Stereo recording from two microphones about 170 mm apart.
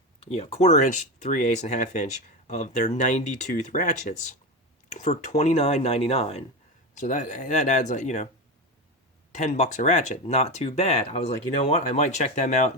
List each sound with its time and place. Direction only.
0.2 s speech: 35° left (ahead or behind)
9.3 s speech: 45° left (ahead or behind)